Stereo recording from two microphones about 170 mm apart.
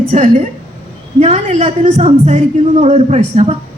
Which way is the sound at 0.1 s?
45° right (ahead or behind).